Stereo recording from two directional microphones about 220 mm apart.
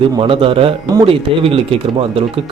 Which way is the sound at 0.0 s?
25° right (ahead or behind).